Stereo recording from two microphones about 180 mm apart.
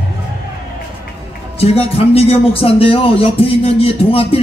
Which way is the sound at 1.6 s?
35° left (ahead or behind).